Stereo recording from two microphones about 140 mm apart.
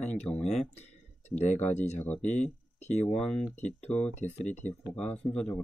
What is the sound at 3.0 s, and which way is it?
Speech, 5° left (ahead or behind).